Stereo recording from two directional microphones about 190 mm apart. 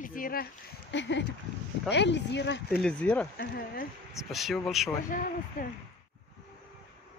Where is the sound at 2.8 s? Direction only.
5° left (ahead or behind).